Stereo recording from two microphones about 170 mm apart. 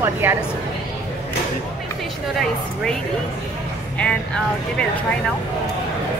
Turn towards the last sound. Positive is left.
turn(degrees=5)  # may be behind; listen again after turning